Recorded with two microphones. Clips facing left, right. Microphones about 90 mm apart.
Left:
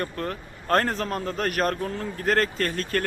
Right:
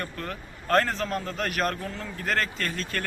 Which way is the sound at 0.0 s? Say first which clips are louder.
Left 5 dB; 35° left (ahead or behind).